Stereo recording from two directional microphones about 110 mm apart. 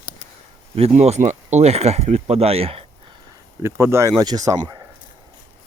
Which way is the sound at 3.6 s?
25° right (ahead or behind).